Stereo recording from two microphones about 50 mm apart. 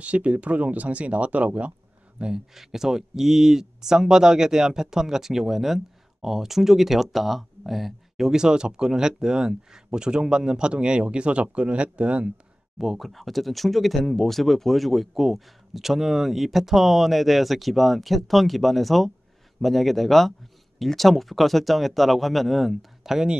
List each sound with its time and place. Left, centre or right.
0.0 s speech: right
2.1 s speech: centre
2.5 s speech: centre
8.3 s speech: centre
12.7 s speech: centre